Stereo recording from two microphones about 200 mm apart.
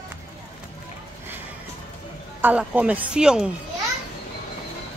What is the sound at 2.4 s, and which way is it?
A woman's voice, 5° right (ahead or behind).